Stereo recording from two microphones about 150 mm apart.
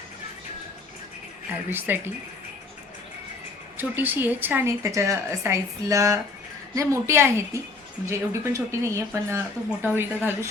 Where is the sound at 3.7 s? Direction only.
10° right (ahead or behind).